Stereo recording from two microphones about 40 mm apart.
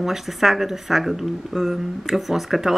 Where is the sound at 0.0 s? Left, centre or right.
Centre.